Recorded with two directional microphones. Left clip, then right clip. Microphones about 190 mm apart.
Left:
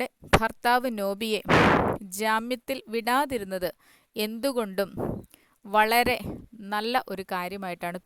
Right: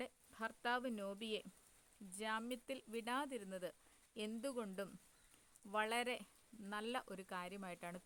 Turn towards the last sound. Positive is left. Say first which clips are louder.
# left 18 dB
turn(degrees=55)  # may be behind; listen again after turning